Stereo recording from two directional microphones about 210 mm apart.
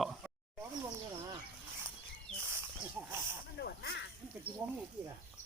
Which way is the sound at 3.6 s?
50° left (ahead or behind).